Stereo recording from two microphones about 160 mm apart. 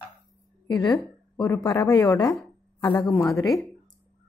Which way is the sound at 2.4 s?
10° left (ahead or behind).